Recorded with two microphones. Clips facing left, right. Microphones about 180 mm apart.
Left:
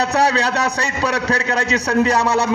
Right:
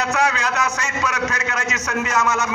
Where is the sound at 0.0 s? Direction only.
35° left (ahead or behind).